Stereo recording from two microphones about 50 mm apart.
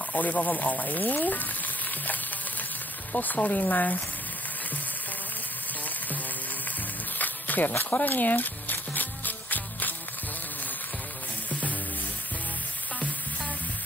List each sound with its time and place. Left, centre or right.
0.1 s frying: left
3.1 s frying: left
7.2 s a sound: left